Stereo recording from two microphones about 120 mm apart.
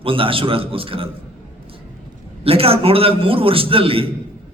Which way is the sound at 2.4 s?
55° right (ahead or behind).